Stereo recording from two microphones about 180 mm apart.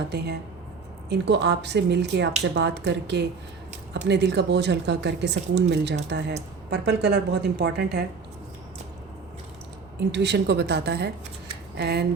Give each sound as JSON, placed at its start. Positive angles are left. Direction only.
{"t": 1.1, "sound": "a woman's voice", "side_deg": -75}
{"t": 10.1, "sound": "a woman's voice", "side_deg": -70}